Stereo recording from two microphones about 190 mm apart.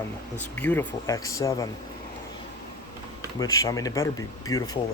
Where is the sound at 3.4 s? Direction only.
20° left (ahead or behind).